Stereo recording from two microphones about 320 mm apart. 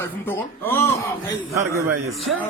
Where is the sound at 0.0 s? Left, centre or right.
Centre.